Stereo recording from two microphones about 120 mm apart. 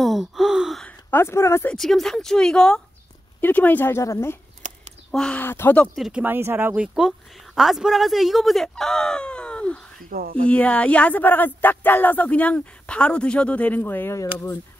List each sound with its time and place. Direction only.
0.0 s gasp: centre (ahead or behind)
0.8 s speech: 20° left (ahead or behind)
1.7 s a woman's voice: centre (ahead or behind); by 4.4 s 25° left (ahead or behind)
5.1 s speech: 5° left (ahead or behind)
5.4 s speech: 15° left (ahead or behind)
5.9 s a woman's voice: centre (ahead or behind)
6.2 s speech: 15° right (ahead or behind); by 14.3 s 25° left (ahead or behind)